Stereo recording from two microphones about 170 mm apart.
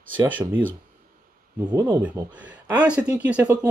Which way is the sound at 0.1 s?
10° right (ahead or behind).